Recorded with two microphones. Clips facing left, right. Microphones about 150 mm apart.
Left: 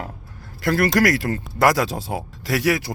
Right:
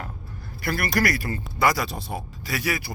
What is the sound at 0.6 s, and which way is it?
Speech, 90° left.